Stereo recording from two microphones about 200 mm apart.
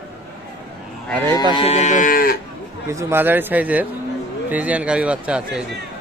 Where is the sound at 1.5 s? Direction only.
30° left (ahead or behind).